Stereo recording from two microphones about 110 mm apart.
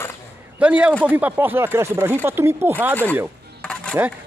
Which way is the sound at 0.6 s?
10° right (ahead or behind).